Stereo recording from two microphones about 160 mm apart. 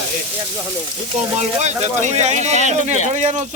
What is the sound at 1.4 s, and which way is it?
Speech, 45° right (ahead or behind).